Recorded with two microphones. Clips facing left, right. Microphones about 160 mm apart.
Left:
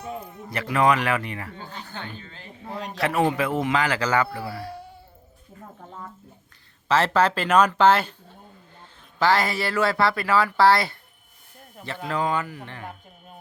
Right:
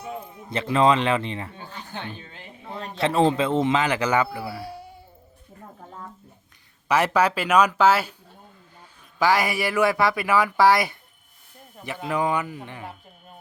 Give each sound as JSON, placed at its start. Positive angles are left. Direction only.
{"t": 0.0, "sound": "speech", "side_deg": -5}
{"t": 0.5, "sound": "a man's voice", "side_deg": -25}
{"t": 5.8, "sound": "a sound", "side_deg": -5}
{"t": 6.8, "sound": "speech", "side_deg": -15}
{"t": 9.1, "sound": "speech", "side_deg": -10}
{"t": 12.8, "sound": "a sound", "side_deg": 0}